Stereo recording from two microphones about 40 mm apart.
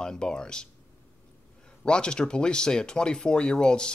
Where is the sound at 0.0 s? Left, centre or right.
Centre.